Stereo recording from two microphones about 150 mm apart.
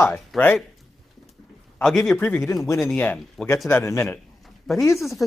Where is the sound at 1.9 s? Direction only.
Centre (ahead or behind).